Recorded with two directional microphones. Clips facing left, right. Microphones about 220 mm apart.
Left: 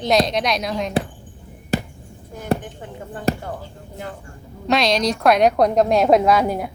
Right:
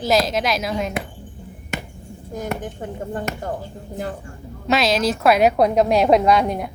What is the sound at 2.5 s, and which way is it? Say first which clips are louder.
Speech: left 4 dB; 35° left (ahead or behind).